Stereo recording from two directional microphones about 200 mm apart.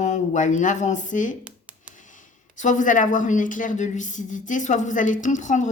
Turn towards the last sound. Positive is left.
turn(degrees=40)  # may be behind; listen again after turning